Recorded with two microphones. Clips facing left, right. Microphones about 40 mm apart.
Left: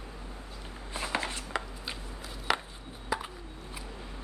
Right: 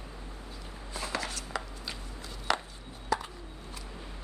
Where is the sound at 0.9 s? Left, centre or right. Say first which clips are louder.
Left 2 dB; left.